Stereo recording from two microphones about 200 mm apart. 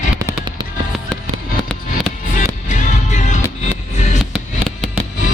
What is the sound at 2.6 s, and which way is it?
Music, 35° left (ahead or behind).